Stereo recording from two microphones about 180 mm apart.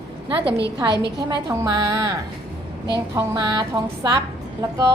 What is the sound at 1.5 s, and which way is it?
A woman's voice, 15° right (ahead or behind).